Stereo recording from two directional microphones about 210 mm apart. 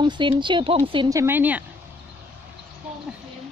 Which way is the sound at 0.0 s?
20° right (ahead or behind).